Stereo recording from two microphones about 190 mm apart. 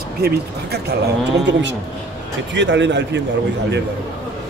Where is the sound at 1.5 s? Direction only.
70° right (ahead or behind).